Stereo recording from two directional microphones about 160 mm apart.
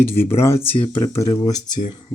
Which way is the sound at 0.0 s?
15° left (ahead or behind).